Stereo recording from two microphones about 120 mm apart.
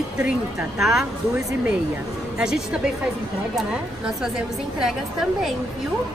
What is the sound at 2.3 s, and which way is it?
A woman's voice, 5° right (ahead or behind).